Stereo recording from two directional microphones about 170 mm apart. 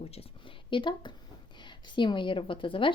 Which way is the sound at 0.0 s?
35° left (ahead or behind).